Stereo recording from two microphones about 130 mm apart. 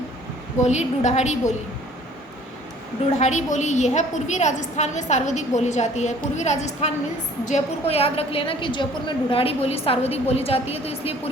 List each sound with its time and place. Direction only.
0.6 s a woman's voice: 65° left (ahead or behind)
3.1 s a woman's voice: 65° left (ahead or behind); by 11.1 s 50° left (ahead or behind)